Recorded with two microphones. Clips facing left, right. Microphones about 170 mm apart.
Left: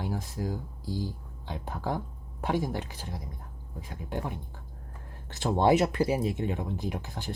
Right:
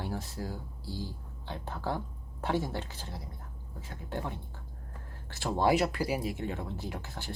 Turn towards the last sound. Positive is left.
turn(degrees=15)  # may be behind; listen again after turning